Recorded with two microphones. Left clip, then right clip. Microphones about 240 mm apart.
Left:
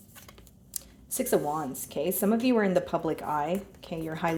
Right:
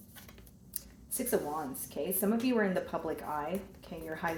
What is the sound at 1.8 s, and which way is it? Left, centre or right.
Speech, left.